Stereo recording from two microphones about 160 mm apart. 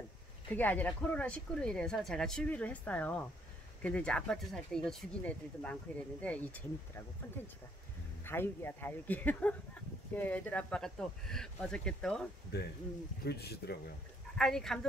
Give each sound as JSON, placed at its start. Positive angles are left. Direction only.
{"t": 0.5, "sound": "speech", "side_deg": 10}
{"t": 8.2, "sound": "speech", "side_deg": 15}
{"t": 12.5, "sound": "speech", "side_deg": 90}
{"t": 14.4, "sound": "speech", "side_deg": 5}